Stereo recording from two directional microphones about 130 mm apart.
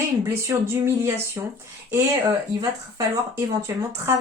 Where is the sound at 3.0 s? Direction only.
20° right (ahead or behind).